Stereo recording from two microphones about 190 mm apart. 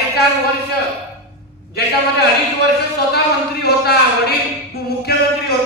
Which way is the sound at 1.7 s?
60° left (ahead or behind).